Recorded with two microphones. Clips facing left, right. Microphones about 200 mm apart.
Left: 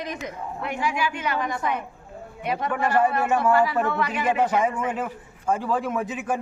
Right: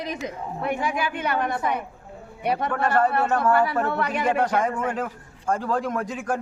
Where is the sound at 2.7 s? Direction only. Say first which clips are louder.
Left 1 dB; 10° left (ahead or behind).